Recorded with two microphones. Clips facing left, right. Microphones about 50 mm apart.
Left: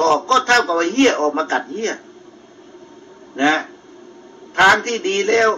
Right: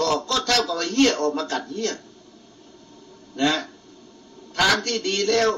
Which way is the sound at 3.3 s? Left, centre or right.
Left.